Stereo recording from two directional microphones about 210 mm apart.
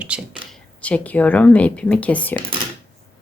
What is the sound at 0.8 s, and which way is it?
Speech, 5° left (ahead or behind).